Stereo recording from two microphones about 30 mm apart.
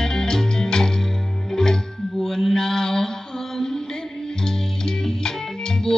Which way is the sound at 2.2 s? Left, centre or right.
Centre.